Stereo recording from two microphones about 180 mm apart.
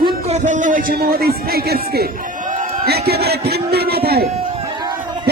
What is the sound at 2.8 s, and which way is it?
Speech, 60° right (ahead or behind).